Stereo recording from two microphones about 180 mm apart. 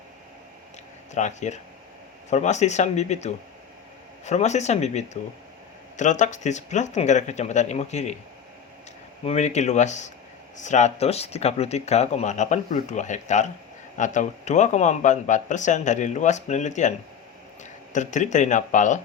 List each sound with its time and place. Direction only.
1.1 s speech: 40° left (ahead or behind)
9.2 s speech: 40° left (ahead or behind)